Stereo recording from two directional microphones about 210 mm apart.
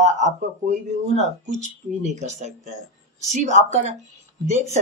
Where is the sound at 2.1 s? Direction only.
35° right (ahead or behind).